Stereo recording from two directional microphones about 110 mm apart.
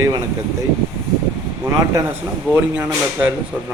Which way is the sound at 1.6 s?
30° right (ahead or behind).